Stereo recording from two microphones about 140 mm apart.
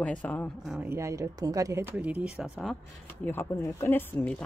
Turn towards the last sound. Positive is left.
turn(degrees=15)  # may be behind; listen again after turning